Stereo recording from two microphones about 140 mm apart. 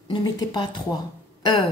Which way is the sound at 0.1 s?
30° left (ahead or behind).